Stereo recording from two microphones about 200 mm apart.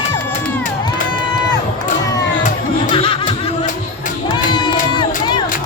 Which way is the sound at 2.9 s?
25° left (ahead or behind).